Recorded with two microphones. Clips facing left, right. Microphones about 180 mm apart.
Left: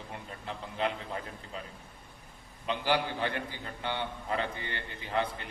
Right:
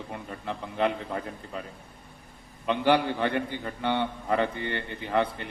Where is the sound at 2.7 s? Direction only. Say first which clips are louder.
Right 7 dB; 60° right (ahead or behind).